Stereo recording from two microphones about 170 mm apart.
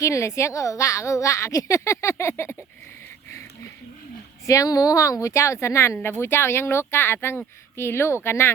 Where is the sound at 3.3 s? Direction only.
20° left (ahead or behind).